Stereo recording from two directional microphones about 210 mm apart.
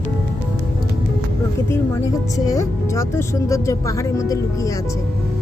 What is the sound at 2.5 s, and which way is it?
Speech, 15° left (ahead or behind).